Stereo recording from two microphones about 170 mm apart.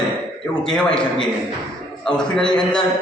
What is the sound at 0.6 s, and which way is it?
A man's voice, 5° left (ahead or behind).